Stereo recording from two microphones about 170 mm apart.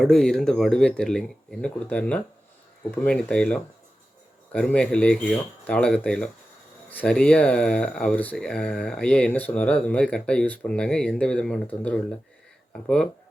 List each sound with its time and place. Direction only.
0.0 s speech: 5° left (ahead or behind)